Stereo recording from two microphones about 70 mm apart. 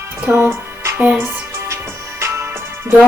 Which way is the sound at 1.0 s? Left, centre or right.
Right.